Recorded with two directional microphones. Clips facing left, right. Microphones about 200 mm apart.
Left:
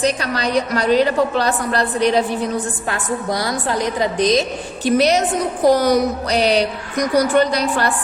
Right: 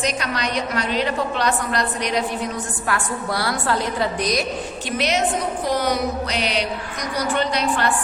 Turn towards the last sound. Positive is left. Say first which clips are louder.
# left 4 dB
turn(degrees=40)  # may be behind; listen again after turning